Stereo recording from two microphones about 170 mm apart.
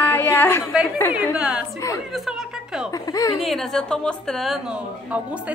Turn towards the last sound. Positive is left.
turn(degrees=-5)  # may be behind; listen again after turning